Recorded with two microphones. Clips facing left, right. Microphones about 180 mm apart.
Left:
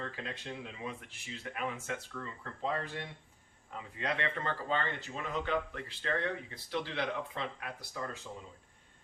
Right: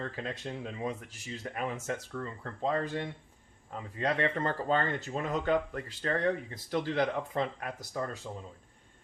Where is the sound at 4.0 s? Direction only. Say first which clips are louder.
Right 6 dB; 40° right (ahead or behind).